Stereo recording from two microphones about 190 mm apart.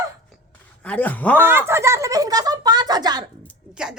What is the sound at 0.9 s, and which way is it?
Speech, 10° left (ahead or behind).